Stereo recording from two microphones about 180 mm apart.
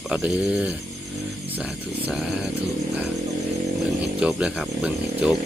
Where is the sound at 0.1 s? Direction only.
5° right (ahead or behind).